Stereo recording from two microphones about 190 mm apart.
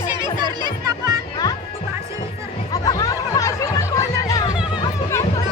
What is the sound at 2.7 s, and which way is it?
Music, 20° left (ahead or behind).